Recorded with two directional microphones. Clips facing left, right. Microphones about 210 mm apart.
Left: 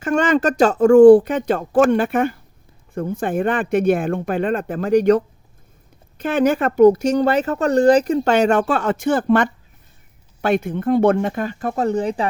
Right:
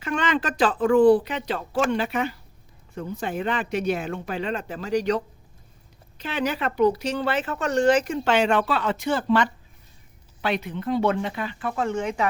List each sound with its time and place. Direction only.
0.0 s speech: 45° left (ahead or behind)